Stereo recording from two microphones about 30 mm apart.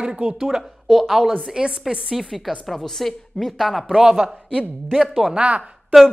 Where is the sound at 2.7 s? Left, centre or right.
Centre.